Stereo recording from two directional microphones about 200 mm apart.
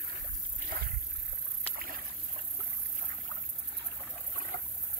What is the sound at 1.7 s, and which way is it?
Rowboat, 45° right (ahead or behind).